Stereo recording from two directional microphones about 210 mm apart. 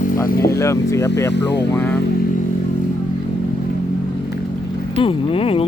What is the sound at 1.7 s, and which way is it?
Speech, 10° left (ahead or behind).